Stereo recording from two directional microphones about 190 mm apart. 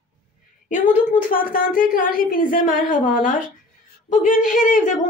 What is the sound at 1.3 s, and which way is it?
A woman's voice, 45° left (ahead or behind).